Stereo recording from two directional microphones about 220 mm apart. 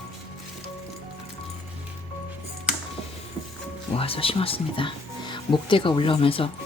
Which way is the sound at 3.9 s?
25° left (ahead or behind).